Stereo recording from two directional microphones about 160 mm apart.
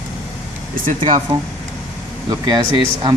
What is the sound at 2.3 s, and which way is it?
Speech, 25° right (ahead or behind).